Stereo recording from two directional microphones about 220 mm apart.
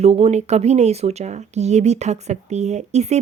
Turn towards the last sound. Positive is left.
turn(degrees=-30)  # may be behind; listen again after turning